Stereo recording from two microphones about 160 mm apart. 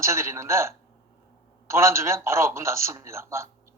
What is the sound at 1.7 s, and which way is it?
A man's voice, 15° right (ahead or behind).